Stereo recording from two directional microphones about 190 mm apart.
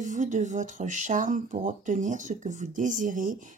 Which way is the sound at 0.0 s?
40° right (ahead or behind).